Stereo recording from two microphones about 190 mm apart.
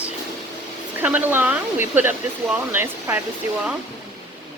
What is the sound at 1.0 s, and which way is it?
Speech, 10° right (ahead or behind).